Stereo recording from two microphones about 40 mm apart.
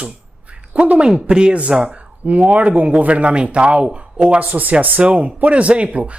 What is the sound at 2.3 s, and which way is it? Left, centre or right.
Speech, right.